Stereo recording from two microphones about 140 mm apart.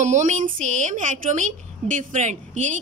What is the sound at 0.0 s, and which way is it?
A woman's voice, 60° right (ahead or behind).